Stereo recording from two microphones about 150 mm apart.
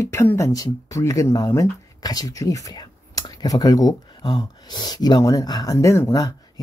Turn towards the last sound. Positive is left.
turn(degrees=25)  # may be behind; listen again after turning